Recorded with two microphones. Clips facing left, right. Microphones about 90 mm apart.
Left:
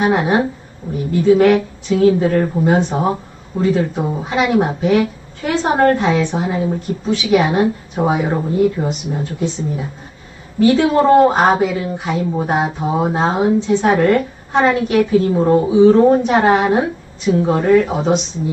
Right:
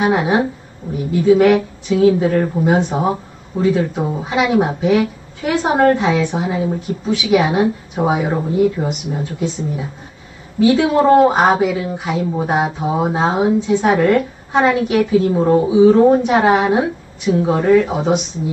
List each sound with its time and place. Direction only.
0.0 s speech: 10° right (ahead or behind)
10.6 s speech: 10° right (ahead or behind)